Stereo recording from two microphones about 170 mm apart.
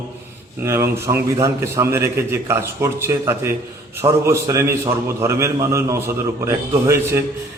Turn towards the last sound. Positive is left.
turn(degrees=-15)  # may be behind; listen again after turning